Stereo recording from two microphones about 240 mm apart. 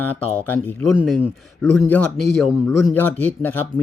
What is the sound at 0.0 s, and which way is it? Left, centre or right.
Speech, centre.